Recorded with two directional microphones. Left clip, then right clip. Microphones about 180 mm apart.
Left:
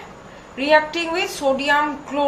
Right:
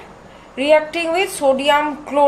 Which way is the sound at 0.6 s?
50° right (ahead or behind).